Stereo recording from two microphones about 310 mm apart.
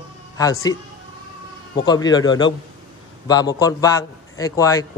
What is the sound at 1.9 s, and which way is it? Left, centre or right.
A man's voice, centre.